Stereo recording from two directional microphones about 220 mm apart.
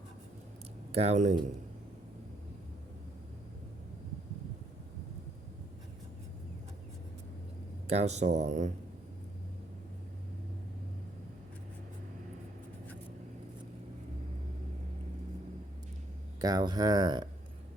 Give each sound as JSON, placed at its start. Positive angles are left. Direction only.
{"t": 0.9, "sound": "speech", "side_deg": -30}
{"t": 7.9, "sound": "speech", "side_deg": -30}
{"t": 16.4, "sound": "speech", "side_deg": -20}